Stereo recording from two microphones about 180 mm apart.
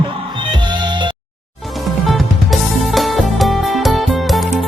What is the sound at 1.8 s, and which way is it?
Music, centre (ahead or behind).